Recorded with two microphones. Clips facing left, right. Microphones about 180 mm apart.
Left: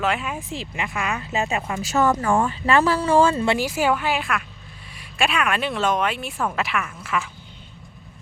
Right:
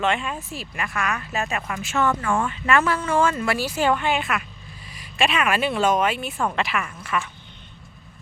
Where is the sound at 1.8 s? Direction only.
40° left (ahead or behind).